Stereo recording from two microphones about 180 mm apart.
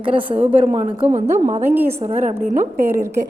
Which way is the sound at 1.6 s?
10° right (ahead or behind).